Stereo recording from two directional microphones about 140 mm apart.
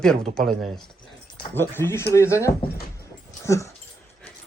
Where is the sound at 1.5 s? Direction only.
15° left (ahead or behind).